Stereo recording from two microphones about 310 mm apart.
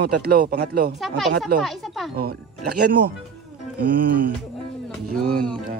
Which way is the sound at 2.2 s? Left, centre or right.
Right.